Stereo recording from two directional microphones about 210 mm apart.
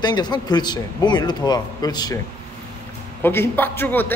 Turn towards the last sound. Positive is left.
turn(degrees=10)  # may be behind; listen again after turning